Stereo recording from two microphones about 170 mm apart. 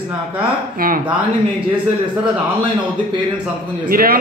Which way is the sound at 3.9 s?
55° right (ahead or behind).